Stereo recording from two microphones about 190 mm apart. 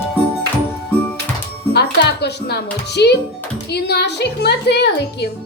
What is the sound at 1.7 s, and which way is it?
Music, 60° left (ahead or behind).